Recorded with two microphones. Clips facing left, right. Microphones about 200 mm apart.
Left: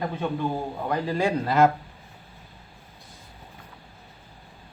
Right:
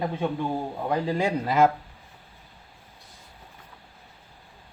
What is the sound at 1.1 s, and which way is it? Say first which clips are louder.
Speech: left 1 dB; 20° right (ahead or behind).